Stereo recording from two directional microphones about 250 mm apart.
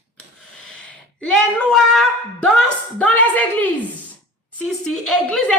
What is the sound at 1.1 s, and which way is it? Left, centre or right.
A woman's voice, centre.